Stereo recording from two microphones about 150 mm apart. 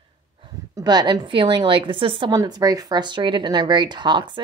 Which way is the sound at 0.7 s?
25° right (ahead or behind).